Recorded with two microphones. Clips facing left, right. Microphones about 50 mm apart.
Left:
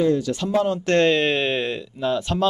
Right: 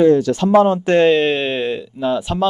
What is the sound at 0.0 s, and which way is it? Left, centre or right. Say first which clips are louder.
Speech: right 8 dB; right.